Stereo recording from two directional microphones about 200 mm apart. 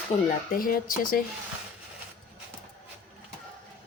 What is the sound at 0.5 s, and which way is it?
Speech, 45° left (ahead or behind).